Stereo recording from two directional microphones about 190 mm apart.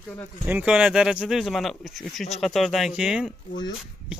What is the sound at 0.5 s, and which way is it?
Speech, 5° right (ahead or behind).